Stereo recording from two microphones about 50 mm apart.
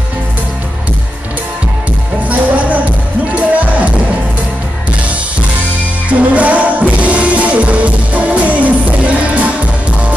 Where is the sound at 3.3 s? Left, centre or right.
Right.